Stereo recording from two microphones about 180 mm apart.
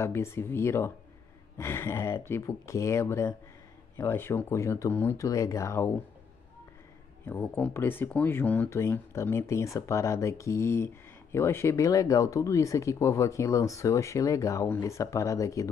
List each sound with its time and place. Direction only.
0.0 s speech: 15° left (ahead or behind)
7.2 s speech: 10° left (ahead or behind)